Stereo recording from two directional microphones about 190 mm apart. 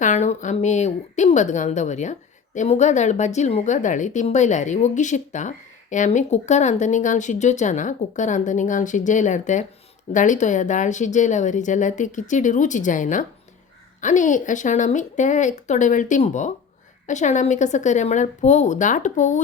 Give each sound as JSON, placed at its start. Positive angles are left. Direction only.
{"t": 0.0, "sound": "a woman's voice", "side_deg": 40}